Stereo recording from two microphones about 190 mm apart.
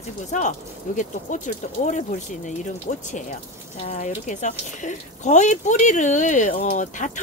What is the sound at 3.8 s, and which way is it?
Speech, 40° left (ahead or behind).